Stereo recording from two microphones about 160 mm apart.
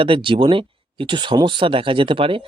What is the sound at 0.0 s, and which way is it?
Speech, 35° right (ahead or behind).